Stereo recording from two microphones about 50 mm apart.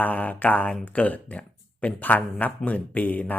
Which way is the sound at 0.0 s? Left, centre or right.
Left.